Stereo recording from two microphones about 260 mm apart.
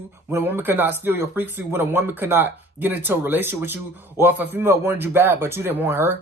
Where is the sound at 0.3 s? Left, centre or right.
Centre.